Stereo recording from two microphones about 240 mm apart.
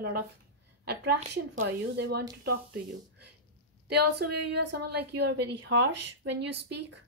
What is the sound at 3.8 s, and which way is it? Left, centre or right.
A woman's voice, right.